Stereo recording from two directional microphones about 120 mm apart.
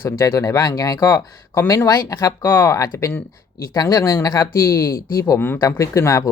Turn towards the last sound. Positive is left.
turn(degrees=25)  # may be behind; listen again after turning